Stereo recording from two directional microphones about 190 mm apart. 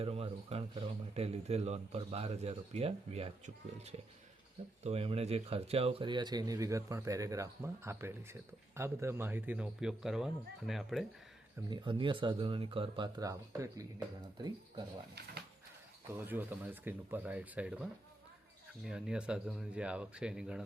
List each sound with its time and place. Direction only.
0.0 s a man's voice: 30° right (ahead or behind); by 11.0 s centre (ahead or behind)
11.7 s speech: 25° right (ahead or behind)
16.0 s speech: 10° right (ahead or behind)
18.9 s speech: 5° right (ahead or behind)